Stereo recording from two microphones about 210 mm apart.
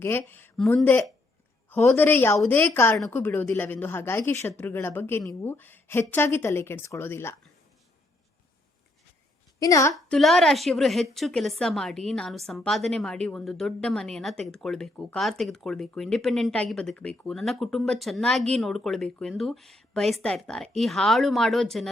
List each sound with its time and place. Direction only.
0.0 s a woman's voice: 10° left (ahead or behind)
9.6 s a woman's voice: 15° left (ahead or behind)
9.9 s a woman's voice: centre (ahead or behind)